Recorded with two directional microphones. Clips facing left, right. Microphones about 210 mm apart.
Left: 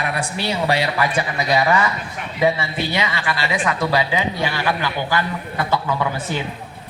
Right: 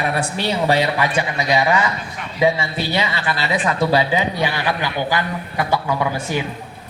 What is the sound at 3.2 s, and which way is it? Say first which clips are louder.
Speech: right 1 dB; 25° right (ahead or behind).